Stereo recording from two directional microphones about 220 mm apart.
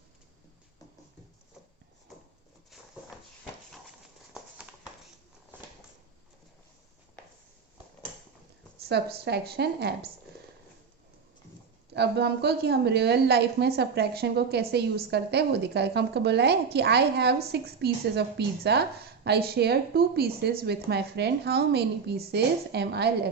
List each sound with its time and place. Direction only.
8.9 s speech: 45° right (ahead or behind)
11.9 s speech: 50° right (ahead or behind)